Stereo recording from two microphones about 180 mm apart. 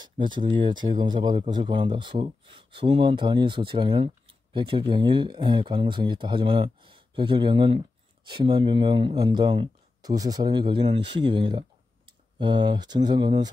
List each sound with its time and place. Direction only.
0.0 s speech: 25° right (ahead or behind)